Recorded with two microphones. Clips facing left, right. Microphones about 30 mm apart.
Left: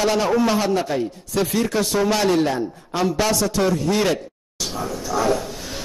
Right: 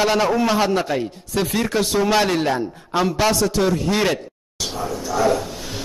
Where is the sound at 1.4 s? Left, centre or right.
Right.